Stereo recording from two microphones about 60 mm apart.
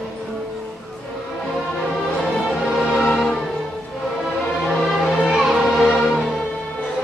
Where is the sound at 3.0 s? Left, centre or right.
Centre.